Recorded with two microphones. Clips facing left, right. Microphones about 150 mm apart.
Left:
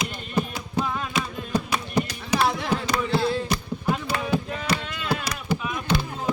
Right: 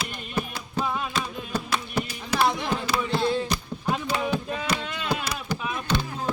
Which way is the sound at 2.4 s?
Centre (ahead or behind).